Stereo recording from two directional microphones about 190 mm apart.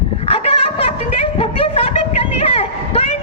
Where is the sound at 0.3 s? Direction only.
30° left (ahead or behind).